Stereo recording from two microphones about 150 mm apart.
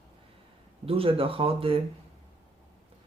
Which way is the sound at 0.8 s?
40° right (ahead or behind).